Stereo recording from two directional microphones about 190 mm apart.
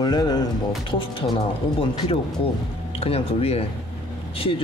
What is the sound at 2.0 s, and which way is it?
Speech, 30° left (ahead or behind).